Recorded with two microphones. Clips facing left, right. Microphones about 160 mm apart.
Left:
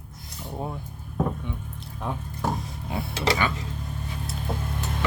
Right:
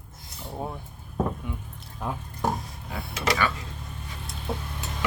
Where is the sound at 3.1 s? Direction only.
30° left (ahead or behind).